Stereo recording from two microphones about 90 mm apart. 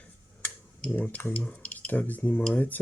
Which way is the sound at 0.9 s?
25° left (ahead or behind).